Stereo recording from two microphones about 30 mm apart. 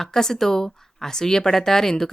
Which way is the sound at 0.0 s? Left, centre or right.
Centre.